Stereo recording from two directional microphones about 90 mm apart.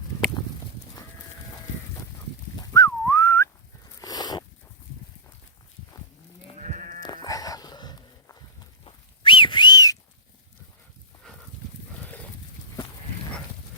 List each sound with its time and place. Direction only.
2.6 s whistling: 40° left (ahead or behind)
4.0 s a sound: 45° left (ahead or behind)
7.0 s dog: 50° left (ahead or behind)
8.8 s whistling: 70° left (ahead or behind); by 10.0 s 45° left (ahead or behind)
11.3 s livestock: 10° left (ahead or behind)